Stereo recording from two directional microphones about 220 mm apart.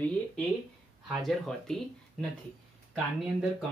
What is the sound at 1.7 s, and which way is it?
Speech, centre (ahead or behind).